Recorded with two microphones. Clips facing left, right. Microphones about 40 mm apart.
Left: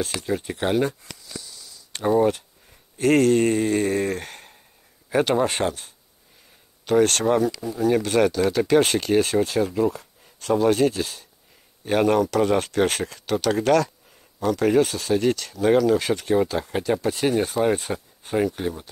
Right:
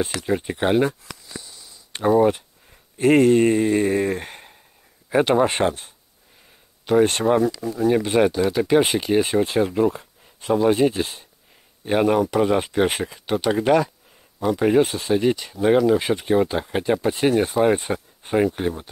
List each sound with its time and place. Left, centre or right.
0.1 s speech: centre
1.3 s a sound: right
2.0 s speech: centre
10.2 s speech: centre
11.8 s speech: centre